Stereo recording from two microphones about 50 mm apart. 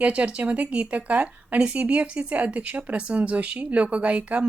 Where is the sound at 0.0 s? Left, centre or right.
Right.